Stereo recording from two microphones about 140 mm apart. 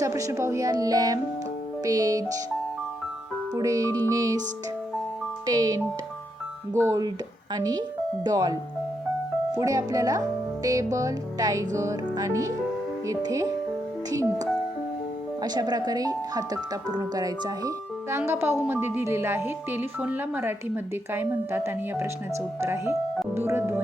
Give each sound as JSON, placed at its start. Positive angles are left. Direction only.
{"t": 0.0, "sound": "speech", "side_deg": -25}
{"t": 3.5, "sound": "speech", "side_deg": -25}
{"t": 5.5, "sound": "speech", "side_deg": -25}
{"t": 9.6, "sound": "speech", "side_deg": -25}
{"t": 15.4, "sound": "speech", "side_deg": -30}